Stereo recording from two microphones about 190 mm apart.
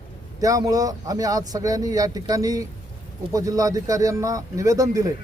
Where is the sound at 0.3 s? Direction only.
20° right (ahead or behind).